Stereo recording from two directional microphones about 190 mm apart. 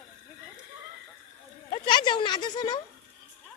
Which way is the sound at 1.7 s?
25° left (ahead or behind).